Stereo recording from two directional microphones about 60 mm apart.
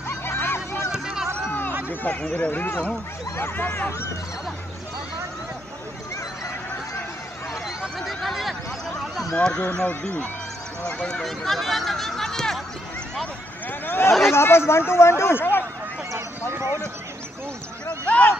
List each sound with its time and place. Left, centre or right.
0.1 s a sound: left
0.9 s a sound: centre
2.2 s speech: centre
3.3 s speech: left
7.9 s speech: centre
9.3 s speech: centre
11.0 s speech: centre
13.7 s a sound: left
14.1 s speech: centre
14.3 s speech: left
16.5 s speech: right
18.0 s a sound: left